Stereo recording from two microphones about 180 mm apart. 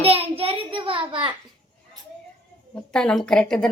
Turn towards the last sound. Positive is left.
turn(degrees=5)  # may be behind; listen again after turning